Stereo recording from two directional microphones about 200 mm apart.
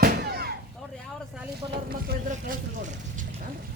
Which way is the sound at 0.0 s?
50° right (ahead or behind).